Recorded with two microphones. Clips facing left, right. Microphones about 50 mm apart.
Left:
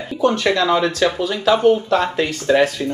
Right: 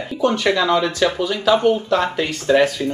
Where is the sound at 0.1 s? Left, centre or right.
Centre.